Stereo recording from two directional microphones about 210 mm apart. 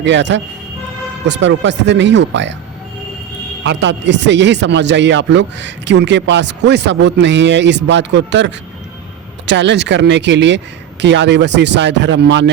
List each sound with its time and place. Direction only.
0.0 s a man's voice: 60° right (ahead or behind)
3.6 s a man's voice: 60° right (ahead or behind)